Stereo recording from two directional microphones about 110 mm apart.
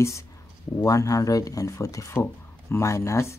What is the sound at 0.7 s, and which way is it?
Speech, 30° left (ahead or behind).